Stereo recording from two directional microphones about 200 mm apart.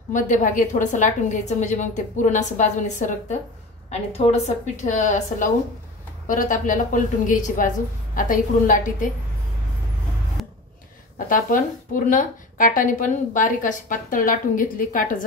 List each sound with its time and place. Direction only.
0.1 s a woman's voice: 40° left (ahead or behind)
11.2 s a woman's voice: 40° left (ahead or behind)